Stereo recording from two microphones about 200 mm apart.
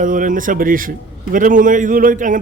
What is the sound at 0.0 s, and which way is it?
A man's voice, 40° right (ahead or behind).